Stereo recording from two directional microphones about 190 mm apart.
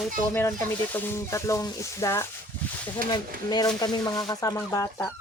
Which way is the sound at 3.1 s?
20° left (ahead or behind).